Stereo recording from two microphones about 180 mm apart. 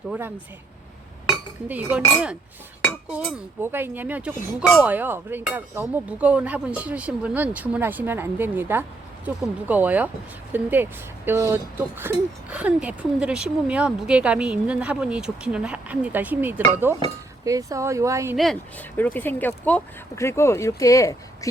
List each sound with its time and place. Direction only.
0.1 s speech: 10° right (ahead or behind)
1.6 s speech: 10° right (ahead or behind)
18.3 s speech: 5° left (ahead or behind)